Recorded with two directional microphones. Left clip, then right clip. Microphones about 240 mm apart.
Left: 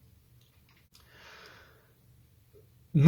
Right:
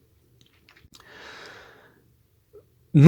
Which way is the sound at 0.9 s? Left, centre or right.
Right.